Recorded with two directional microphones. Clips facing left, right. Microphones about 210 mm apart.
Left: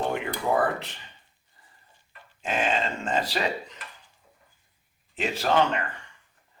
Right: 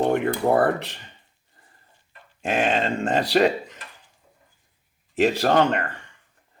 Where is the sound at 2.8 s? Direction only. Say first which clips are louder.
Right 5 dB; 65° right (ahead or behind).